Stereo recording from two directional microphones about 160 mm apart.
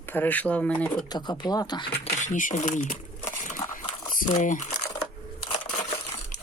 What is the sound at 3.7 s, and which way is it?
Crumpling, 55° left (ahead or behind).